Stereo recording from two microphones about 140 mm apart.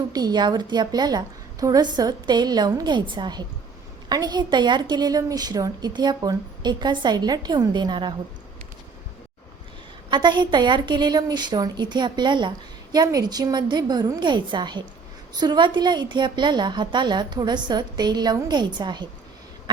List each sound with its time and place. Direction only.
0.1 s a woman's voice: 30° right (ahead or behind)
10.1 s a woman's voice: 35° right (ahead or behind)